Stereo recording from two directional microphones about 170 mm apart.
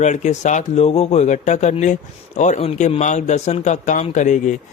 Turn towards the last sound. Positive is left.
turn(degrees=45)  # may be behind; listen again after turning